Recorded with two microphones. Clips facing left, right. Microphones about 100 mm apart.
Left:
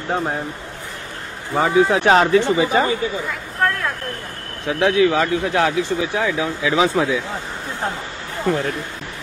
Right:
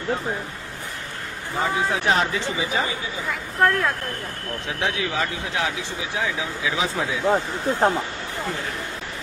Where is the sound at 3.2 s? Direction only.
5° right (ahead or behind).